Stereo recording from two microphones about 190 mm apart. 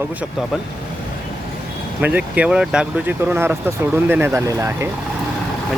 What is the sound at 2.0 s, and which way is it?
Speech, 10° right (ahead or behind).